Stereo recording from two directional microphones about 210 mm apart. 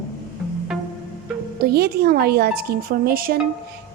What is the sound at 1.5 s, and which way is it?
A woman's voice, 50° right (ahead or behind).